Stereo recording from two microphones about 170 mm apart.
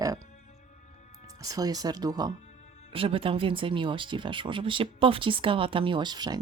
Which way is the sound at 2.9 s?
35° right (ahead or behind).